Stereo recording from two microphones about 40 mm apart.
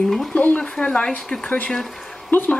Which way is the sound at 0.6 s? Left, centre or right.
Left.